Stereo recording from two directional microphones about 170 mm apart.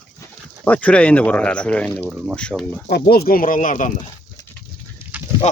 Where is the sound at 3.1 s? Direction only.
65° left (ahead or behind).